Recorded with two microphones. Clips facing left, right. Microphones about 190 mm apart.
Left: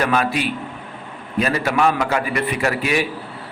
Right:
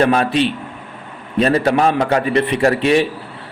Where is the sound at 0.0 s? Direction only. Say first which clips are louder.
Right 5 dB; 30° right (ahead or behind).